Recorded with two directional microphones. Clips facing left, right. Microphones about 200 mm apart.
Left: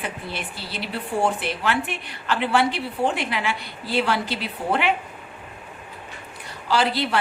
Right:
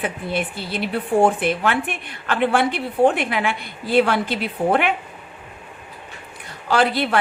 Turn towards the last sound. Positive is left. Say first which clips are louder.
# right 3 dB
turn(degrees=-55)  # may be behind; listen again after turning